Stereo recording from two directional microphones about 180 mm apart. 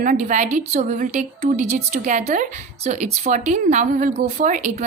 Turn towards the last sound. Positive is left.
turn(degrees=-40)  # may be behind; listen again after turning